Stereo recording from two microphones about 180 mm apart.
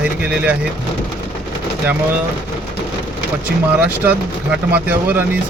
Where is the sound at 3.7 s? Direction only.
10° right (ahead or behind).